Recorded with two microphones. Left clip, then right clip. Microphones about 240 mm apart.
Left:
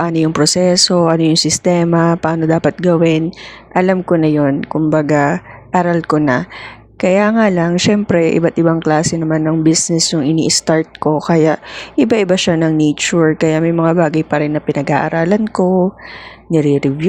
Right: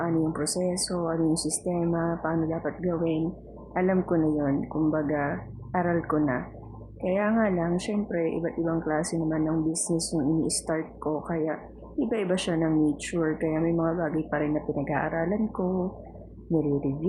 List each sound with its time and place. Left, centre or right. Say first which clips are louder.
0.0 s speech: left 13 dB; left